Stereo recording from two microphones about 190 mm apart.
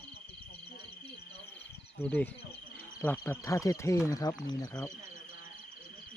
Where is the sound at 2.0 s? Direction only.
10° left (ahead or behind).